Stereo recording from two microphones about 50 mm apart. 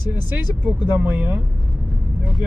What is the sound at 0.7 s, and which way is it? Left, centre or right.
Speech, right.